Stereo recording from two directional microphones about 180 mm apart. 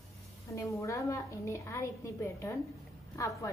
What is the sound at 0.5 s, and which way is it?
A woman's voice, 15° left (ahead or behind).